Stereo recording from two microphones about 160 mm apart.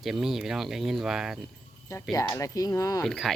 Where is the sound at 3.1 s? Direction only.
Centre (ahead or behind).